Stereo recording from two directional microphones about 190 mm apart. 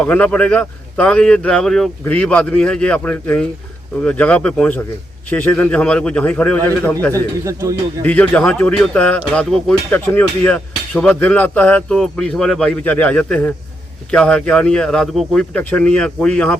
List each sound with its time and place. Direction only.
0.0 s speech: 5° left (ahead or behind)
7.1 s a man's voice: 15° right (ahead or behind)
8.0 s a man's voice: 10° left (ahead or behind)